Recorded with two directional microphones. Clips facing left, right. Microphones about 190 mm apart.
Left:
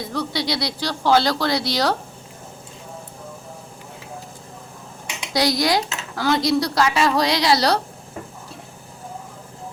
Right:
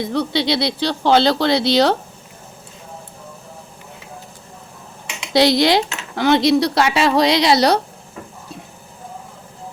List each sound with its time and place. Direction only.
0.1 s speech: 25° right (ahead or behind)
5.3 s speech: 25° right (ahead or behind)